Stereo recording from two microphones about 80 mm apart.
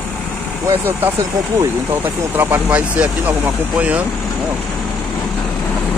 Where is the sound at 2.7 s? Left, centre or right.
Centre.